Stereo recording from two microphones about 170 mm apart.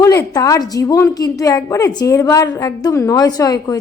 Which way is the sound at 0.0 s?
20° left (ahead or behind).